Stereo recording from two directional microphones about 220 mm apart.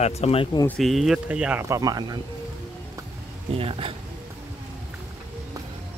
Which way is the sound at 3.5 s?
25° right (ahead or behind).